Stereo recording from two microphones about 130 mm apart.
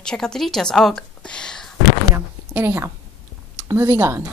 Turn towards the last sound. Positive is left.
turn(degrees=-20)  # may be behind; listen again after turning